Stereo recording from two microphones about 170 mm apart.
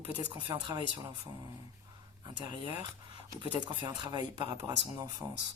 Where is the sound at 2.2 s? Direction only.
30° right (ahead or behind).